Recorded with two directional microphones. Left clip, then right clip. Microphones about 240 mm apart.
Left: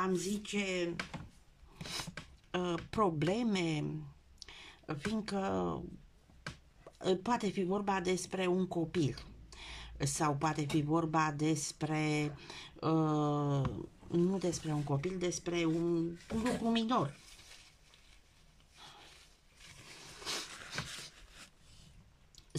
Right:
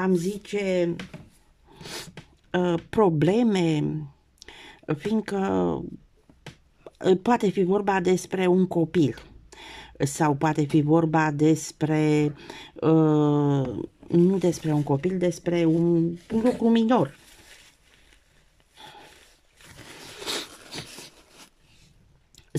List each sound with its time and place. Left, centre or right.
0.0 s speech: right
7.0 s speech: right
18.8 s a sound: right